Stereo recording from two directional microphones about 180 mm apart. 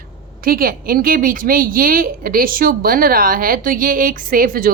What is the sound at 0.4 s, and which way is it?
A woman's voice, 55° right (ahead or behind).